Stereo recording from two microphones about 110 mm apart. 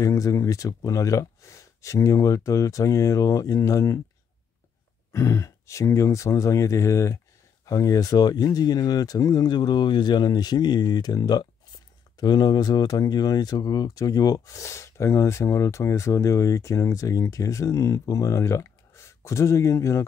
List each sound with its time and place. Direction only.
0.0 s speech: 30° left (ahead or behind)
5.1 s speech: 30° left (ahead or behind)